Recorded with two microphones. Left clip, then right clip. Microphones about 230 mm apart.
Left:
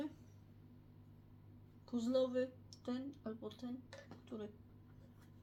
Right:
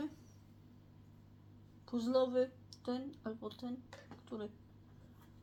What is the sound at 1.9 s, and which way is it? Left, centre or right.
Speech, right.